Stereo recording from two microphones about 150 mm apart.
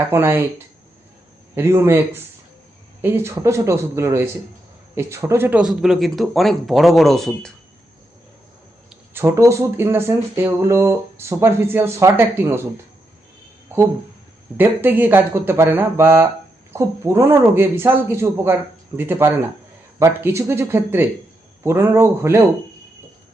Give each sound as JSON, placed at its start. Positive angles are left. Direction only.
{"t": 0.1, "sound": "speech", "side_deg": -15}
{"t": 1.5, "sound": "speech", "side_deg": -15}
{"t": 9.1, "sound": "speech", "side_deg": -20}
{"t": 14.5, "sound": "speech", "side_deg": -15}